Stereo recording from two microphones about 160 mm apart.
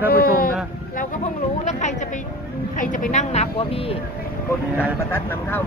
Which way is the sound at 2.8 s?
55° left (ahead or behind).